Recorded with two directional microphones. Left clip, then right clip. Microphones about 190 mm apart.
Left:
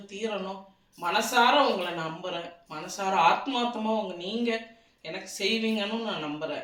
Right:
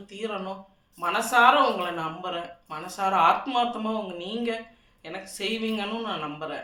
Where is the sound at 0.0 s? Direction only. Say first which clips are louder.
Even; 20° right (ahead or behind).